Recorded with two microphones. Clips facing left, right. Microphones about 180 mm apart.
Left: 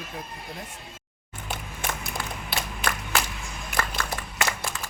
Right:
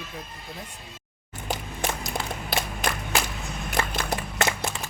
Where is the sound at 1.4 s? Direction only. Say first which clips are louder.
Right 4 dB; 40° right (ahead or behind).